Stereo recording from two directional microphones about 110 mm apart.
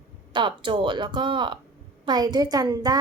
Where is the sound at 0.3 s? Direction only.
50° right (ahead or behind).